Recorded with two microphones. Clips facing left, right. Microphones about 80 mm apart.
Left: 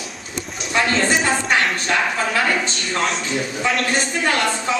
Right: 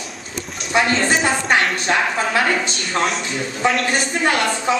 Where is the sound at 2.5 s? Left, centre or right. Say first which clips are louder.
Right 1 dB; centre.